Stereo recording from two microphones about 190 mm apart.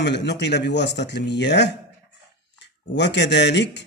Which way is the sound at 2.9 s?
65° left (ahead or behind).